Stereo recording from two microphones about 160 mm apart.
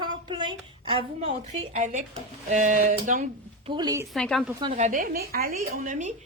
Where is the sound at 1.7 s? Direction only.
50° right (ahead or behind).